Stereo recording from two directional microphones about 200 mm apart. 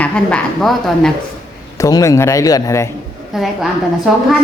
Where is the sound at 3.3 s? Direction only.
Centre (ahead or behind).